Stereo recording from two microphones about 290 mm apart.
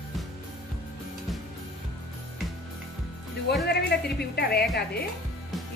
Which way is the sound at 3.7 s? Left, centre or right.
Left.